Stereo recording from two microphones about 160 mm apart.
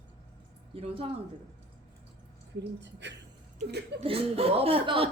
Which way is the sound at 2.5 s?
90° right.